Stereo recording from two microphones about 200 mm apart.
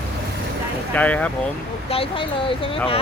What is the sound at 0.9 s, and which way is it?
Speech, 5° left (ahead or behind).